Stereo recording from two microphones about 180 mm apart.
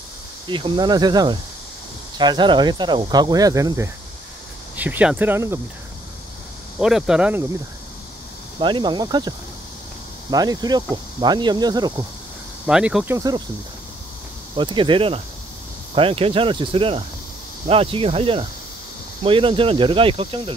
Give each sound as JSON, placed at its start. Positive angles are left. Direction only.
{"t": 0.5, "sound": "speech", "side_deg": -25}
{"t": 6.8, "sound": "speech", "side_deg": -5}
{"t": 8.5, "sound": "speech", "side_deg": -25}
{"t": 10.3, "sound": "speech", "side_deg": -20}
{"t": 12.6, "sound": "speech", "side_deg": -5}
{"t": 14.6, "sound": "speech", "side_deg": -25}
{"t": 15.9, "sound": "cricket", "side_deg": -30}
{"t": 19.2, "sound": "speech", "side_deg": -30}